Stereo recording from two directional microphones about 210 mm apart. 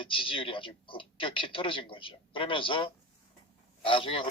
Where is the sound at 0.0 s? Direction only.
25° left (ahead or behind).